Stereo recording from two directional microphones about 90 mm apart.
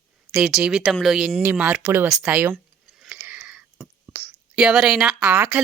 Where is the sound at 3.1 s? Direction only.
20° right (ahead or behind).